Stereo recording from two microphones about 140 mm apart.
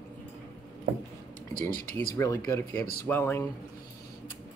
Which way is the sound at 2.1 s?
15° left (ahead or behind).